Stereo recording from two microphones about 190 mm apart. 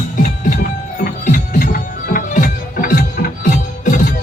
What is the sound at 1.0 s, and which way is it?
Music, 50° left (ahead or behind).